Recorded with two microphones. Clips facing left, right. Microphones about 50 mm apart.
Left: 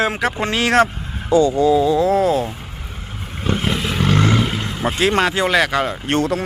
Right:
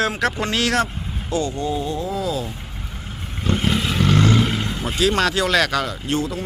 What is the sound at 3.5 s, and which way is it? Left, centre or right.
Vehicle, centre.